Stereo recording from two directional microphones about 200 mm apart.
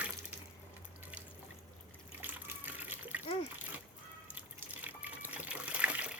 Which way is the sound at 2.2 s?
10° right (ahead or behind).